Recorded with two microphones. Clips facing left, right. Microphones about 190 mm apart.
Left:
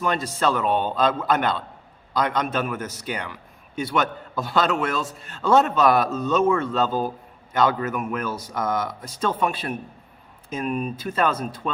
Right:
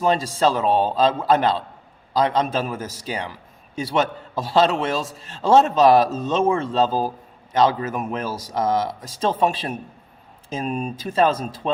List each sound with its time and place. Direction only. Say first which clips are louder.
0.0 s a man's voice: right 4 dB; 30° right (ahead or behind)